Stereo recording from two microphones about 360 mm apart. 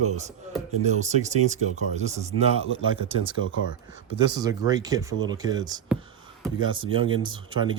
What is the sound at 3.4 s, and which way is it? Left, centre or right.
Speech, left.